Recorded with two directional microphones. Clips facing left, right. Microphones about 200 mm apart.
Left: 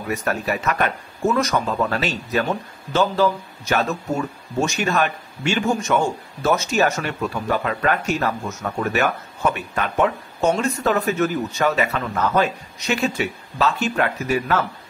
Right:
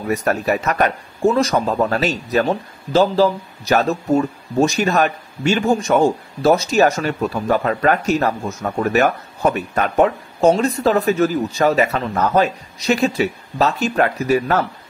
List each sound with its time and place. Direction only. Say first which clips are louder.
0.1 s speech: right 5 dB; 40° right (ahead or behind)